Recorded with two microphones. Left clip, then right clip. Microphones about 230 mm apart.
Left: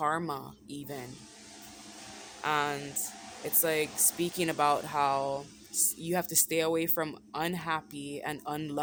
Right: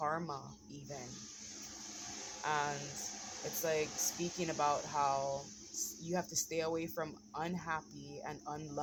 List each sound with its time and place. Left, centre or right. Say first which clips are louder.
0.0 s speech: left 7 dB; left
2.4 s speech: left 7 dB; left